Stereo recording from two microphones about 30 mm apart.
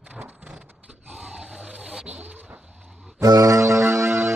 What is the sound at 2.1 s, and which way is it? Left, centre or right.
Vehicle, right.